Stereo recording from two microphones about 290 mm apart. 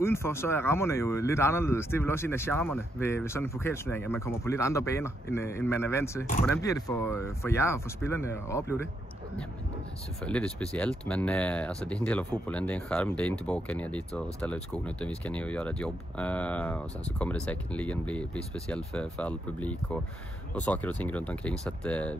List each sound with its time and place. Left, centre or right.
0.0 s speech: centre
10.2 s speech: centre